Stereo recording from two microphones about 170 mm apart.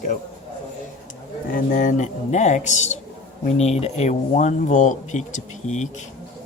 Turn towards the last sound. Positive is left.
turn(degrees=45)  # may be behind; listen again after turning